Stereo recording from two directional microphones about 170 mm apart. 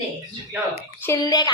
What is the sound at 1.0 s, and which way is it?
Speech, 20° left (ahead or behind).